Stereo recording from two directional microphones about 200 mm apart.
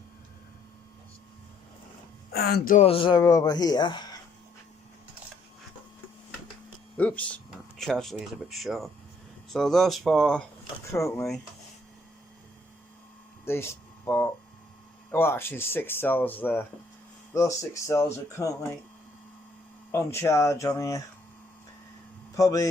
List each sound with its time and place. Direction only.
2.3 s speech: 50° left (ahead or behind)
2.7 s speech: 30° left (ahead or behind)
6.9 s speech: 5° left (ahead or behind)
10.9 s speech: 15° left (ahead or behind)
13.4 s a sound: 10° left (ahead or behind)
15.1 s speech: 10° left (ahead or behind)
19.9 s speech: 15° left (ahead or behind)
22.4 s speech: 15° left (ahead or behind)